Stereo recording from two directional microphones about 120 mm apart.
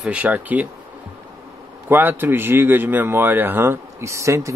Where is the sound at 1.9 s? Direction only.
15° right (ahead or behind).